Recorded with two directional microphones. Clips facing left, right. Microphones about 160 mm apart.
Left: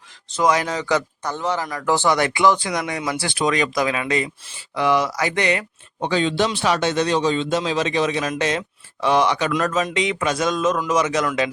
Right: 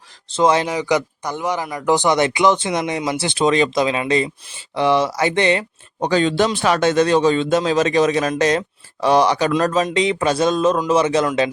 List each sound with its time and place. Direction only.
0.3 s speech: 25° right (ahead or behind)
0.7 s speech: 15° right (ahead or behind)
6.0 s speech: 45° right (ahead or behind)